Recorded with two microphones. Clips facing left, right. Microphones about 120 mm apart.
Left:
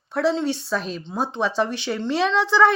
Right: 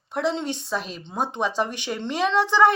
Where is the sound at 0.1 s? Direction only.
20° right (ahead or behind).